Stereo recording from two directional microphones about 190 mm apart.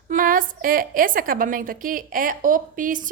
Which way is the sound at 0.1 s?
45° right (ahead or behind).